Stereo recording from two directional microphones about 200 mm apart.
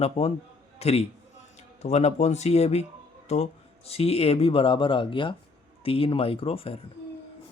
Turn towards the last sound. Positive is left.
turn(degrees=30)  # may be behind; listen again after turning